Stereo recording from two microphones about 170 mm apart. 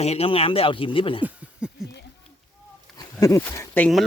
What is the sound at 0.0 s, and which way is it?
Speech, 35° left (ahead or behind).